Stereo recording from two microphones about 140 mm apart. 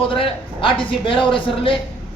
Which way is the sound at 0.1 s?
40° left (ahead or behind).